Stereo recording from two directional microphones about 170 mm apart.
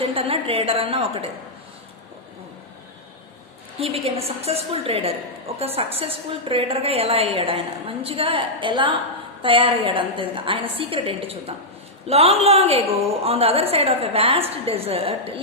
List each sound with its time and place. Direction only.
0.0 s a woman's voice: 35° right (ahead or behind)
3.8 s a woman's voice: 35° right (ahead or behind)